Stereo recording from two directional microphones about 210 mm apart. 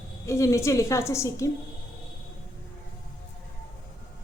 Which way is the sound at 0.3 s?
15° left (ahead or behind).